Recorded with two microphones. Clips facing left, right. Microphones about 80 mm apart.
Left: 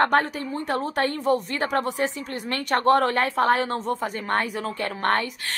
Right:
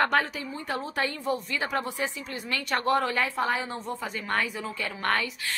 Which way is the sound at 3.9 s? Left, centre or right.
Left.